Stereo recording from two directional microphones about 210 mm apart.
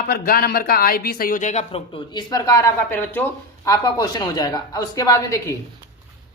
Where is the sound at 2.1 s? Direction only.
15° left (ahead or behind).